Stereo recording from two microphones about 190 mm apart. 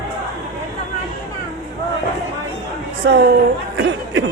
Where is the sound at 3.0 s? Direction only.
65° right (ahead or behind).